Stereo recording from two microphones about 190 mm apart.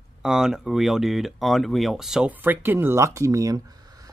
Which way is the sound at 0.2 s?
5° right (ahead or behind).